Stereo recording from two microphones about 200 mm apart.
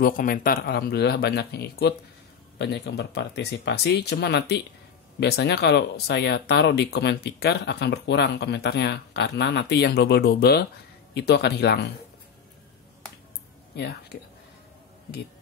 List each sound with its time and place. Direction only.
0.0 s speech: 45° left (ahead or behind)
13.7 s speech: 55° left (ahead or behind)